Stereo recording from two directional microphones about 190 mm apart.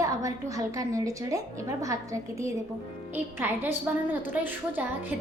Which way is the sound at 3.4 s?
10° right (ahead or behind).